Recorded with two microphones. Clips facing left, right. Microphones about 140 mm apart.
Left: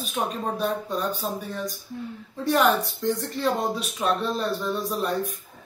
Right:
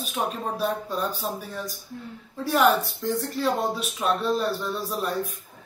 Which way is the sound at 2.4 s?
5° right (ahead or behind).